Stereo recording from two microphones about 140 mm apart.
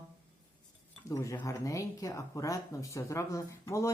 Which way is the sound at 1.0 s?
20° left (ahead or behind).